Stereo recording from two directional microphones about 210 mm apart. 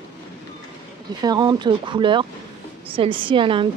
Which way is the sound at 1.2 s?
20° right (ahead or behind).